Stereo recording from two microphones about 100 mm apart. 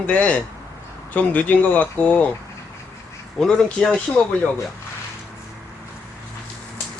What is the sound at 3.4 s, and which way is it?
Speech, 10° left (ahead or behind).